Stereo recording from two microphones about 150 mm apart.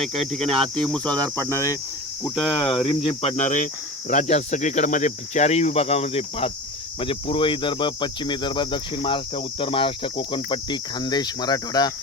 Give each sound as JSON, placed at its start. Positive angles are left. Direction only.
{"t": 0.0, "sound": "cricket", "side_deg": 0}
{"t": 2.3, "sound": "speech", "side_deg": 35}